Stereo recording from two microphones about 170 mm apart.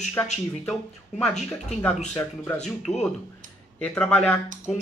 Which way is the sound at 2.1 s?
10° left (ahead or behind).